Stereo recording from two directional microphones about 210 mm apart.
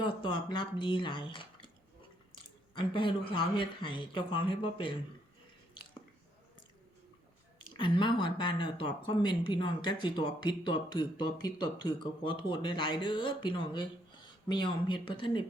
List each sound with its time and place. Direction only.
0.0 s speech: 20° left (ahead or behind)
7.8 s speech: 25° left (ahead or behind)